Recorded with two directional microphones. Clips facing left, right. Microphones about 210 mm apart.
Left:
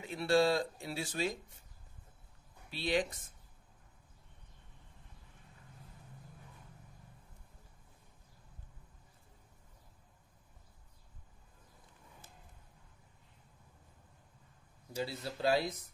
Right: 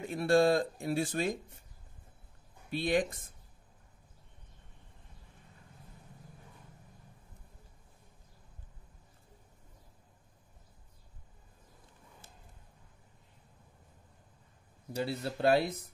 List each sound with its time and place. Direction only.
0.0 s speech: 50° right (ahead or behind)
2.7 s speech: 50° right (ahead or behind)
14.9 s speech: 60° right (ahead or behind)